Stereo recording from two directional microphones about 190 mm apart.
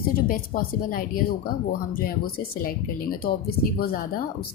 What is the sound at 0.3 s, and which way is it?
A woman's voice, 50° left (ahead or behind).